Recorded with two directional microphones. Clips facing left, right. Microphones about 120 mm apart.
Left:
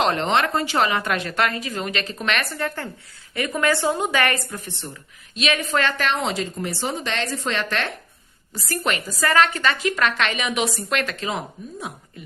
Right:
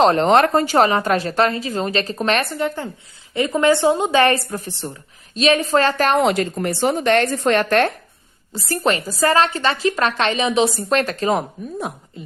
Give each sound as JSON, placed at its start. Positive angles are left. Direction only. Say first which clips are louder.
{"t": 0.0, "sound": "a woman's voice", "louder": "right 7 dB", "side_deg": -35}
{"t": 6.1, "sound": "a woman's voice", "louder": "right 8 dB", "side_deg": -60}
{"t": 8.5, "sound": "a woman's voice", "louder": "right 5 dB", "side_deg": -30}